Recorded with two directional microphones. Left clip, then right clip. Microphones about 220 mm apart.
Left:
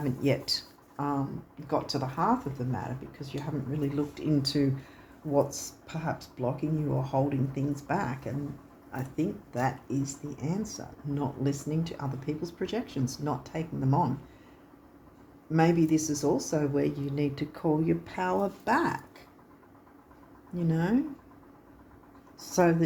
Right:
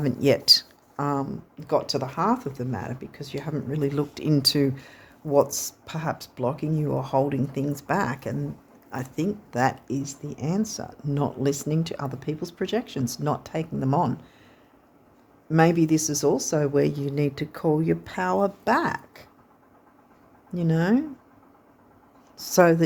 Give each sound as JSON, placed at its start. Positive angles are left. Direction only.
{"t": 0.0, "sound": "speech", "side_deg": -50}
{"t": 15.4, "sound": "speech", "side_deg": -50}
{"t": 20.5, "sound": "speech", "side_deg": -50}
{"t": 22.4, "sound": "speech", "side_deg": -50}